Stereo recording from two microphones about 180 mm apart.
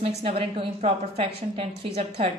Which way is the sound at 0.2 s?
35° right (ahead or behind).